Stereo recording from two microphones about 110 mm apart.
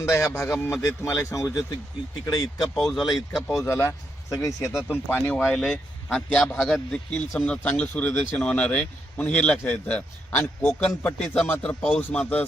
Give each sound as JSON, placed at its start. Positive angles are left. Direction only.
{"t": 0.0, "sound": "speech", "side_deg": 25}
{"t": 2.2, "sound": "speech", "side_deg": 35}
{"t": 2.7, "sound": "speech", "side_deg": 0}
{"t": 3.0, "sound": "speech", "side_deg": 35}
{"t": 5.4, "sound": "a man's voice", "side_deg": 0}